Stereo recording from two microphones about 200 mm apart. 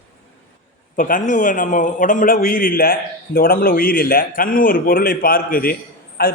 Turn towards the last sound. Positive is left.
turn(degrees=50)  # may be behind; listen again after turning